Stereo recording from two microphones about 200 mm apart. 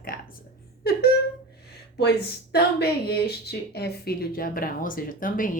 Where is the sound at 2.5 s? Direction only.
50° left (ahead or behind).